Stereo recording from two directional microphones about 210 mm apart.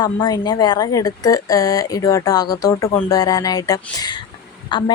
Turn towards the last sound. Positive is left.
turn(degrees=20)  # may be behind; listen again after turning